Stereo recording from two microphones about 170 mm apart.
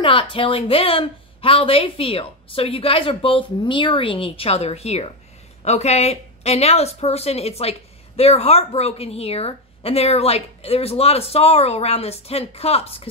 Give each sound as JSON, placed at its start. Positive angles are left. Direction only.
{"t": 0.0, "sound": "a woman's voice", "side_deg": 30}